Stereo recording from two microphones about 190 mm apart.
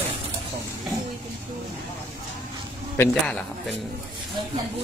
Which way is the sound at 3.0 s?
5° left (ahead or behind).